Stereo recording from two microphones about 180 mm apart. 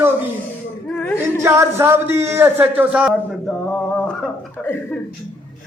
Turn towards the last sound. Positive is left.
turn(degrees=10)  # may be behind; listen again after turning